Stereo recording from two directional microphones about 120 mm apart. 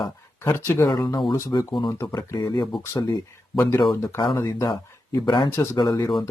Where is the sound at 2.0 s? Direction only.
30° left (ahead or behind).